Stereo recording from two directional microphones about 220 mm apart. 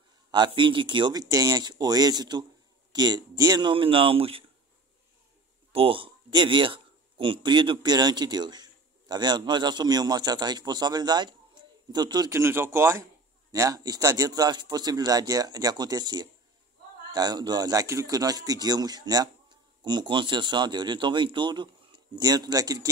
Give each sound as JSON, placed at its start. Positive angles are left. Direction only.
{"t": 0.3, "sound": "a man's voice", "side_deg": -20}
{"t": 5.7, "sound": "a man's voice", "side_deg": -25}